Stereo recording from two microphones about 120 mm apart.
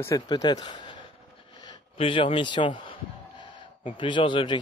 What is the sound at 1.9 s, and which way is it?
A man's voice, 50° left (ahead or behind).